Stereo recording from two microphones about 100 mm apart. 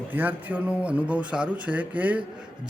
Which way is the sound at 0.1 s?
20° right (ahead or behind).